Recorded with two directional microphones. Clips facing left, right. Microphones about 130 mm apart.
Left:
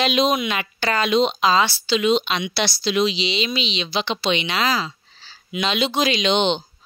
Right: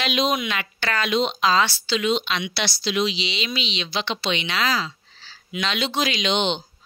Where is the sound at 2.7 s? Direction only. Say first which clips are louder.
Left 3 dB; 40° left (ahead or behind).